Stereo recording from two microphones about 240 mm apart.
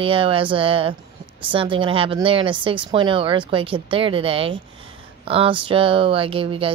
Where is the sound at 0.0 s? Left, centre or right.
Right.